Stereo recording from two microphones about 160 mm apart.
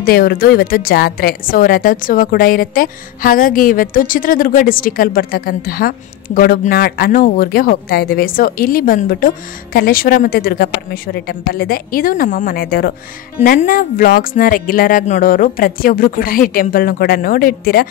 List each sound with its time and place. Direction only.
0.0 s a woman's voice: 70° left (ahead or behind)
12.5 s a woman's voice: 70° left (ahead or behind)